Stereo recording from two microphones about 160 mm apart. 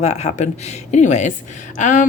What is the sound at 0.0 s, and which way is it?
Speech, 45° left (ahead or behind).